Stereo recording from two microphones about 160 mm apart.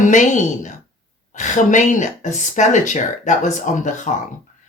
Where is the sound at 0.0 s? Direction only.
50° left (ahead or behind).